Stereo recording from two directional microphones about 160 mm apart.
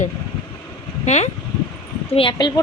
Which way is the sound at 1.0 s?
45° left (ahead or behind).